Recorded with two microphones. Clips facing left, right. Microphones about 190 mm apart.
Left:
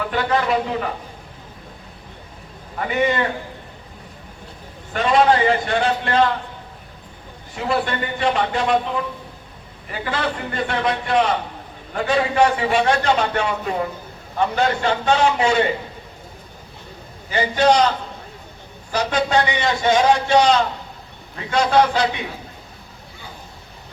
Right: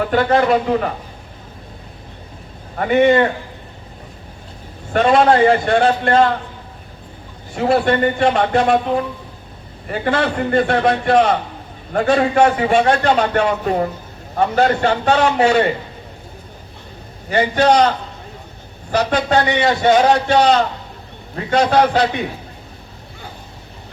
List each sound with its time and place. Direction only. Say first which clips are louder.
0.1 s a man's voice: right 6 dB; 45° right (ahead or behind)
2.7 s a man's voice: right 8 dB; 50° right (ahead or behind)
4.9 s a man's voice: right 4 dB; 45° right (ahead or behind)
7.5 s a man's voice: right 7 dB; 45° right (ahead or behind)
17.3 s a man's voice: right 3 dB; 45° right (ahead or behind)
18.9 s a man's voice: right 4 dB; 45° right (ahead or behind)
20.4 s a man's voice: right 3 dB; 55° right (ahead or behind)
21.3 s a man's voice: right 2 dB; 40° right (ahead or behind)